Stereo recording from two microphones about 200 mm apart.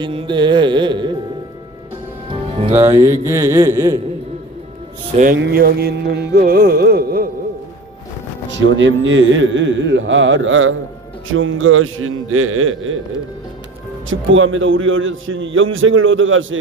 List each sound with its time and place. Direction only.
0.0 s speech: 25° right (ahead or behind)
2.3 s music: 25° right (ahead or behind)
2.7 s speech: 10° right (ahead or behind)
5.1 s music: 40° right (ahead or behind)
8.4 s a man's voice: 65° right (ahead or behind); by 13.0 s 85° right
14.1 s a man's voice: 80° right